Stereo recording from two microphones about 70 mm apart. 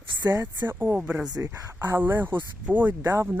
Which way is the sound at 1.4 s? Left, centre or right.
Right.